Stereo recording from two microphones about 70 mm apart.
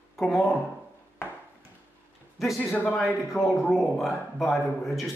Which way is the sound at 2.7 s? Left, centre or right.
Left.